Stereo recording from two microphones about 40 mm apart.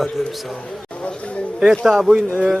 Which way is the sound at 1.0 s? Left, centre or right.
Left.